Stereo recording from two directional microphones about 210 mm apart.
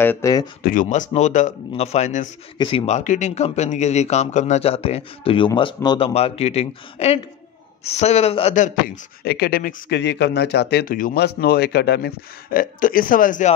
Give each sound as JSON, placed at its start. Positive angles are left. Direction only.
{"t": 0.0, "sound": "speech", "side_deg": 10}
{"t": 0.7, "sound": "speech", "side_deg": 35}